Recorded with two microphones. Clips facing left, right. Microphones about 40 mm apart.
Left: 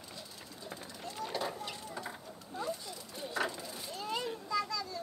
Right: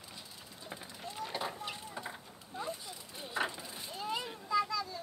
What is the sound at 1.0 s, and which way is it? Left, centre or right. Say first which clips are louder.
Vehicle: left 1 dB; centre.